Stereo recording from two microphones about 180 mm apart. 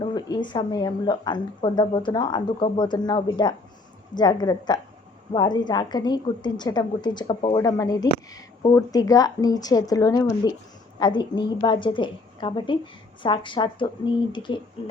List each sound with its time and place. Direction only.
0.0 s a woman's voice: 25° left (ahead or behind)